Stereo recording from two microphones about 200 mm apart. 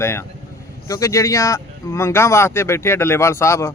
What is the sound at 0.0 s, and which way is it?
Speech, 15° left (ahead or behind).